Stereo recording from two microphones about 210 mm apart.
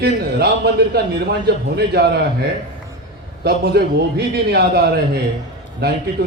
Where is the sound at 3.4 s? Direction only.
50° right (ahead or behind).